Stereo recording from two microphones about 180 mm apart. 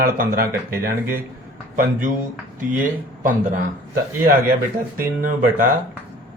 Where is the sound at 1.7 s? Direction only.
45° right (ahead or behind).